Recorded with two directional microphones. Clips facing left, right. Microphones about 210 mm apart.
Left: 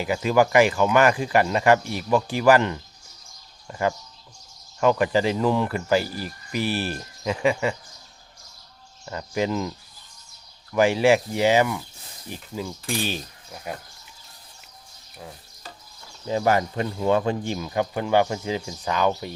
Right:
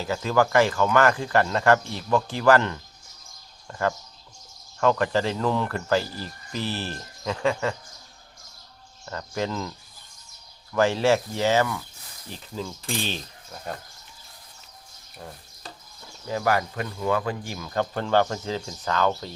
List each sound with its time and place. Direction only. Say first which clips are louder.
0.0 s speech: left 3 dB; 15° left (ahead or behind)
9.0 s speech: left 4 dB; 15° left (ahead or behind)
10.8 s speech: left 3 dB; 15° left (ahead or behind)
16.2 s speech: left 3 dB; 25° left (ahead or behind)